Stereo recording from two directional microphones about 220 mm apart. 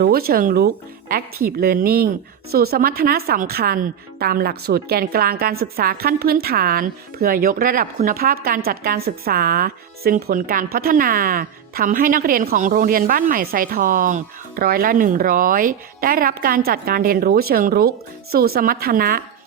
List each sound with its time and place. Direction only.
0.0 s a woman's voice: 45° right (ahead or behind)